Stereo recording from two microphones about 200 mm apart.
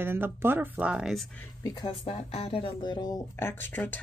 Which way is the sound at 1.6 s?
20° left (ahead or behind).